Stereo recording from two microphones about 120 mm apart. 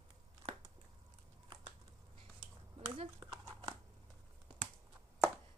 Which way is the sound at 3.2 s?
30° right (ahead or behind).